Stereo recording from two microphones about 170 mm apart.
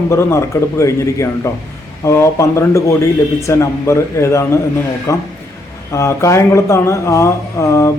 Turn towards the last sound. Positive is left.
turn(degrees=15)  # may be behind; listen again after turning